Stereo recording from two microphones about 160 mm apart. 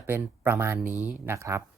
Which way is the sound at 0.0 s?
15° right (ahead or behind).